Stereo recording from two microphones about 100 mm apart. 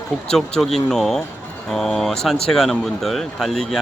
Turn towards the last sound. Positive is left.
turn(degrees=0)  # may be behind; listen again after turning